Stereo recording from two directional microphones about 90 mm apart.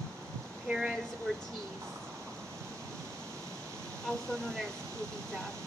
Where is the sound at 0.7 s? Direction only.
10° right (ahead or behind).